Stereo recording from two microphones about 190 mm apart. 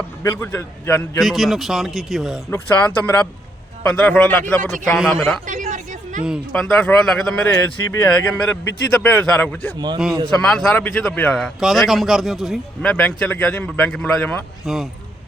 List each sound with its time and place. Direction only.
0.2 s a man's voice: 15° left (ahead or behind)
1.2 s a man's voice: centre (ahead or behind)
5.5 s a sound: 40° right (ahead or behind)
6.5 s a man's voice: 5° left (ahead or behind)
9.7 s a man's voice: 25° right (ahead or behind)
10.2 s a man's voice: 5° left (ahead or behind)